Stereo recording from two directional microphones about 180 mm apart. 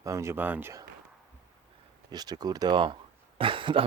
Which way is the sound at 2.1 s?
20° right (ahead or behind).